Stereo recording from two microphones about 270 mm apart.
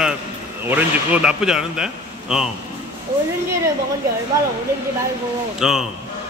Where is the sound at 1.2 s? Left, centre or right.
Centre.